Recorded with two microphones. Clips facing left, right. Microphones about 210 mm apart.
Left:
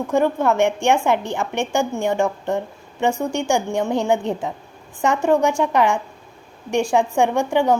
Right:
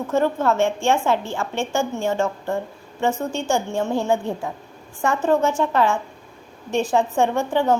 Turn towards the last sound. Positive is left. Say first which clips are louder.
# left 2 dB
turn(degrees=10)  # may be behind; listen again after turning